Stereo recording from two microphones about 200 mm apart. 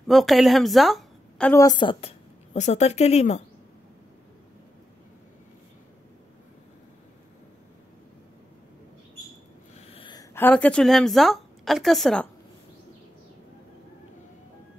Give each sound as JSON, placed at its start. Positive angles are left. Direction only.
{"t": 0.0, "sound": "speech", "side_deg": 0}
{"t": 1.5, "sound": "a woman's voice", "side_deg": 20}
{"t": 9.8, "sound": "a sound", "side_deg": 30}
{"t": 10.3, "sound": "a woman's voice", "side_deg": 10}